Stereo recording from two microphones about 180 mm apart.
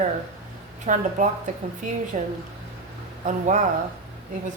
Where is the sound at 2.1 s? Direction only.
40° right (ahead or behind).